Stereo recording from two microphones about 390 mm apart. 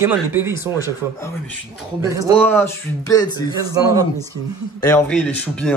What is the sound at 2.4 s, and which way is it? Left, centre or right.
Speech, centre.